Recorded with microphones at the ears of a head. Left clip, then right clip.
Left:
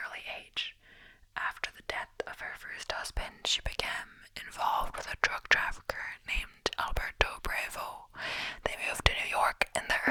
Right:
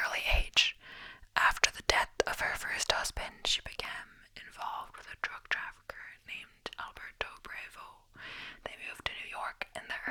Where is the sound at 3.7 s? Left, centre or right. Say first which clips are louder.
Left 5 dB; left.